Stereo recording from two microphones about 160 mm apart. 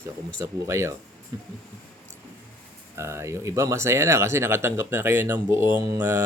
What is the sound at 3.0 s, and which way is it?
Speech, 15° right (ahead or behind).